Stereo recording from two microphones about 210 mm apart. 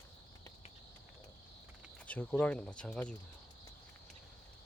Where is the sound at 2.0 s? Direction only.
5° left (ahead or behind).